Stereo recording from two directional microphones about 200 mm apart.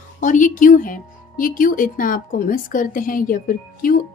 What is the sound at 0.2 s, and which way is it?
A woman's voice, 40° left (ahead or behind).